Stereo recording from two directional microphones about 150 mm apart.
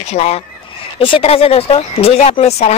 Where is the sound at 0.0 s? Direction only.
45° left (ahead or behind).